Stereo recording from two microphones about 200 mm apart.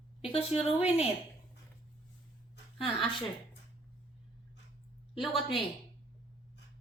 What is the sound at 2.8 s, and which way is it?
Speech, 25° left (ahead or behind).